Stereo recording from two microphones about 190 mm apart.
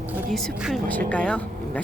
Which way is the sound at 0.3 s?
Centre (ahead or behind).